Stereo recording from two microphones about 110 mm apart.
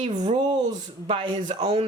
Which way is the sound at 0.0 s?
90° right.